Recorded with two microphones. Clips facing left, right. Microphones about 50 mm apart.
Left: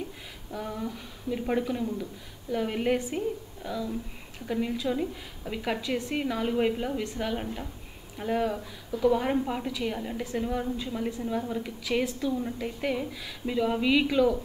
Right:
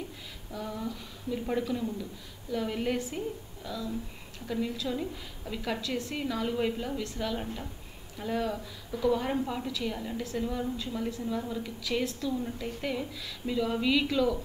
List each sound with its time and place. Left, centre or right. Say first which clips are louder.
0.5 s a woman's voice: left 2 dB; centre